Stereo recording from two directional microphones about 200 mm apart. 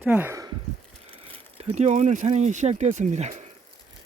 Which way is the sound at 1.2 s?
30° right (ahead or behind).